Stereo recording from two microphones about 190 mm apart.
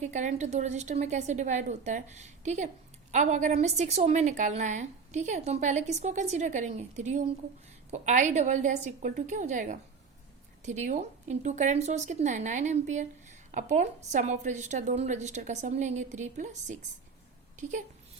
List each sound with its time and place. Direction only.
0.0 s speech: 40° right (ahead or behind)